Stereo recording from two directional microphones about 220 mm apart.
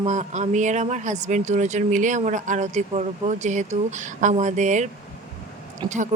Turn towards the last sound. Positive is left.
turn(degrees=-20)  # may be behind; listen again after turning